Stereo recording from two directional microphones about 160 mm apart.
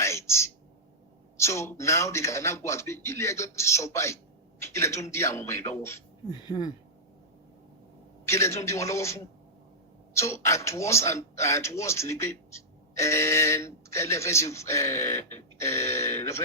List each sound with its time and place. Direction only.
0.0 s a sound: 15° left (ahead or behind)
1.4 s a man's voice: 15° left (ahead or behind)
8.3 s a man's voice: 15° left (ahead or behind)
10.2 s a man's voice: 20° left (ahead or behind)